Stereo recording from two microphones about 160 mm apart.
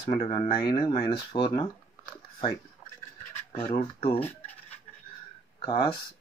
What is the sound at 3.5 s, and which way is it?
Speech, 35° left (ahead or behind).